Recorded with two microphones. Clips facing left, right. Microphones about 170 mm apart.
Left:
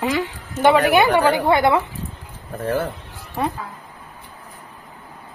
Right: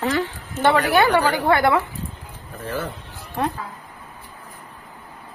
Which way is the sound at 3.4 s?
5° left (ahead or behind).